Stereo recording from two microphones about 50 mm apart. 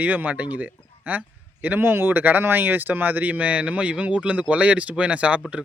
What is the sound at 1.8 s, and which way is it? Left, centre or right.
Speech, right.